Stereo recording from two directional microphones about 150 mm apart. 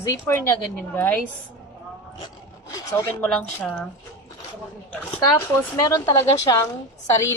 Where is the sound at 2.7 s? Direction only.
20° left (ahead or behind).